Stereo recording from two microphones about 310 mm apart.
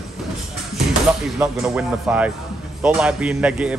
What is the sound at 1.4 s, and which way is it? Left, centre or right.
Speech, centre.